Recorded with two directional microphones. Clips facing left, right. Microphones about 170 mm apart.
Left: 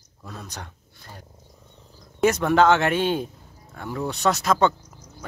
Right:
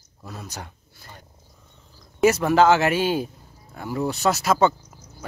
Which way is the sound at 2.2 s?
5° right (ahead or behind).